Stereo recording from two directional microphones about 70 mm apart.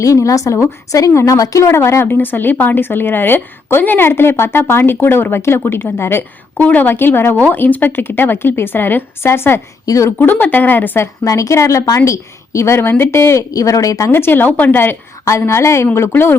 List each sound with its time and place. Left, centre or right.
0.0 s a woman's voice: left
2.1 s speech: left
9.8 s a woman's voice: left
10.2 s speech: left
11.2 s a woman's voice: left
13.5 s a woman's voice: left
14.1 s speech: left
15.2 s speech: left